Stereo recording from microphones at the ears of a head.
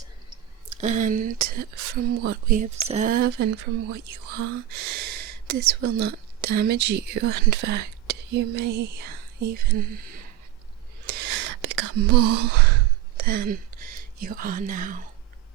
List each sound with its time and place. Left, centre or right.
0.7 s speech: right
11.0 s sigh: right